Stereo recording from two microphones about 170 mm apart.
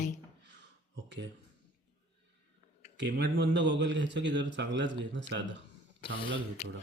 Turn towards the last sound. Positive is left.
turn(degrees=40)  # may be behind; listen again after turning